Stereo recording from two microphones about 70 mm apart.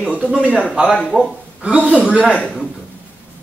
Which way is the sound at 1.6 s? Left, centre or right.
Centre.